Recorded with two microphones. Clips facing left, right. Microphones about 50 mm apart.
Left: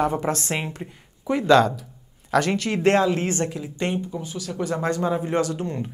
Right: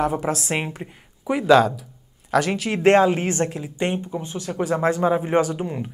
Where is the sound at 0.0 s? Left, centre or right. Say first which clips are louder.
Even; centre.